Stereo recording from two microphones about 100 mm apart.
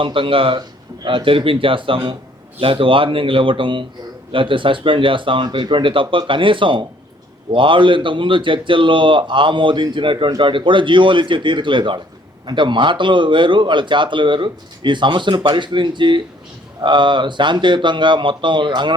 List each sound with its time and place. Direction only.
0.0 s speech: 60° right (ahead or behind)